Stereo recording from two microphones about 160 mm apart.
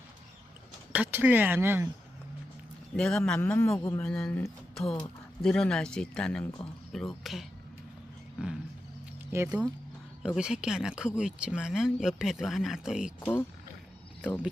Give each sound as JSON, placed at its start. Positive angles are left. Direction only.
{"t": 0.9, "sound": "speech", "side_deg": -10}
{"t": 2.9, "sound": "speech", "side_deg": 5}
{"t": 3.4, "sound": "a man's voice", "side_deg": 15}
{"t": 4.0, "sound": "speech", "side_deg": 5}
{"t": 9.3, "sound": "speech", "side_deg": -15}
{"t": 10.2, "sound": "speech", "side_deg": -5}